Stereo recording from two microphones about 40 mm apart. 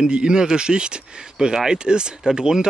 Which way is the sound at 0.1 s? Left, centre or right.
Right.